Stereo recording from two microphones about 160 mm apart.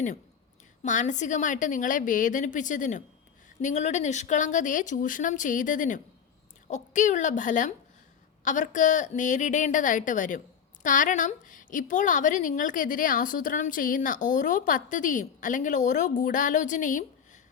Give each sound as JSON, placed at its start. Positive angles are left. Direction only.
{"t": 0.8, "sound": "a woman's voice", "side_deg": 50}